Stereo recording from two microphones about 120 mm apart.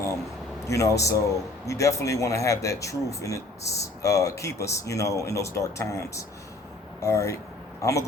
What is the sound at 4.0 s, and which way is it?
A man's voice, 25° left (ahead or behind).